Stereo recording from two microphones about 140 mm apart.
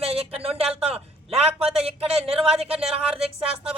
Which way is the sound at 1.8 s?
45° right (ahead or behind).